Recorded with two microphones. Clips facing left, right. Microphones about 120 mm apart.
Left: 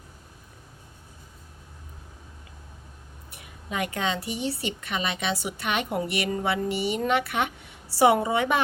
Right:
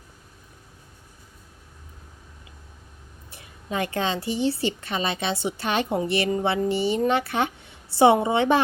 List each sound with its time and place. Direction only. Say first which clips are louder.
3.3 s a woman's voice: right 3 dB; 30° right (ahead or behind)